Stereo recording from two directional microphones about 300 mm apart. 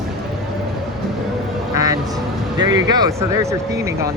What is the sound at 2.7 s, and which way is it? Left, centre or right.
Speech, centre.